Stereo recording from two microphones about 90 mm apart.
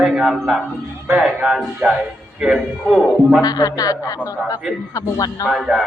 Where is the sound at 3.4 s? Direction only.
45° left (ahead or behind).